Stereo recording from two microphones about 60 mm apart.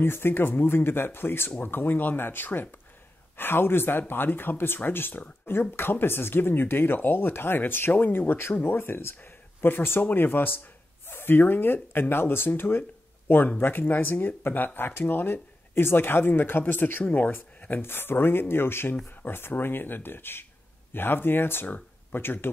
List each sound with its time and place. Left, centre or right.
0.0 s speech: left
21.6 s a sound: left
22.2 s speech: left